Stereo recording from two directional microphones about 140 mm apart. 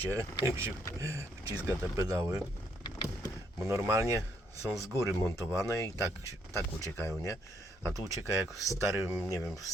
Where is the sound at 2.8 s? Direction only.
30° left (ahead or behind).